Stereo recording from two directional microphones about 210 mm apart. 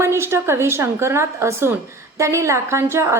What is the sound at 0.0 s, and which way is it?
A woman's voice, 10° right (ahead or behind).